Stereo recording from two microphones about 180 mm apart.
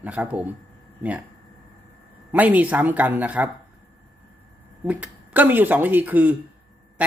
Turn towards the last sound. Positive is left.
turn(degrees=-10)  # may be behind; listen again after turning